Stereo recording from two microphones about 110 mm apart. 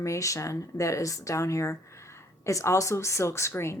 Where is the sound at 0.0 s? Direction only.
30° left (ahead or behind).